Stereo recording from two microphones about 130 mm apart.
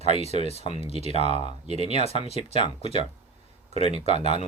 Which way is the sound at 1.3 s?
45° left (ahead or behind).